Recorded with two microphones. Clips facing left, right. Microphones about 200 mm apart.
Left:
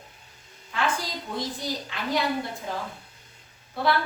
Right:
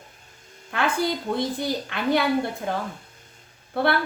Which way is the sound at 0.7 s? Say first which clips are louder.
Right 5 dB; 60° right (ahead or behind).